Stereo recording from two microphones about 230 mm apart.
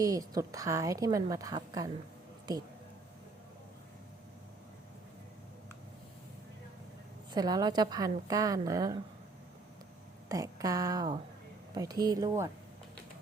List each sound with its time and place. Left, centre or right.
0.0 s a woman's voice: centre
7.3 s a woman's voice: centre
10.2 s a woman's voice: centre